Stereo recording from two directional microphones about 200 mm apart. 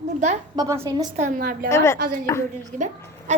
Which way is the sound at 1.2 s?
45° right (ahead or behind).